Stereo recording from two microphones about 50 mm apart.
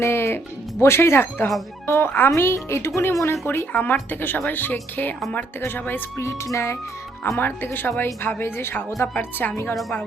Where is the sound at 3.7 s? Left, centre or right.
Left.